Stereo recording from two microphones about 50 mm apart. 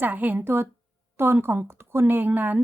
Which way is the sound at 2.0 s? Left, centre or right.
Right.